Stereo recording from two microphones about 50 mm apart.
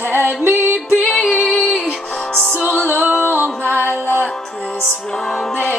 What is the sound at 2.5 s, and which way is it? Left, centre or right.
Music, right.